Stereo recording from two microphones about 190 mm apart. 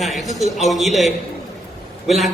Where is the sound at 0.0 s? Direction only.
Centre (ahead or behind).